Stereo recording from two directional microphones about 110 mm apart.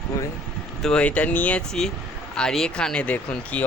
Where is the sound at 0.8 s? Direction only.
5° left (ahead or behind).